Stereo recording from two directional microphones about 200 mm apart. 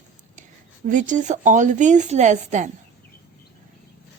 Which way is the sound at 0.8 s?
40° right (ahead or behind).